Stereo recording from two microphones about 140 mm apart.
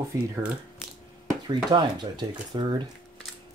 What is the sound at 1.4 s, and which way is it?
Speech, 35° right (ahead or behind).